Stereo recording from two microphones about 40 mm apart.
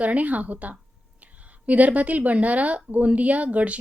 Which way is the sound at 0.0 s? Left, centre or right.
Right.